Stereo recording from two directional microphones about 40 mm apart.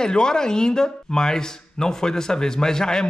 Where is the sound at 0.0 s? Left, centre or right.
Centre.